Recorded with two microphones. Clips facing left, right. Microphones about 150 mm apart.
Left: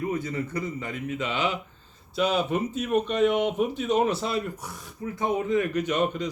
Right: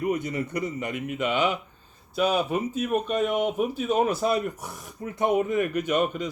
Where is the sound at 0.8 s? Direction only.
15° right (ahead or behind).